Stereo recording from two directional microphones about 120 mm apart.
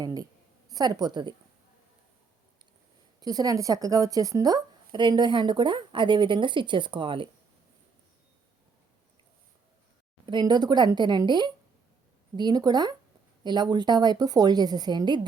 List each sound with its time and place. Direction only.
0.0 s speech: 30° right (ahead or behind)
3.2 s speech: 30° right (ahead or behind)
10.2 s speech: 40° right (ahead or behind)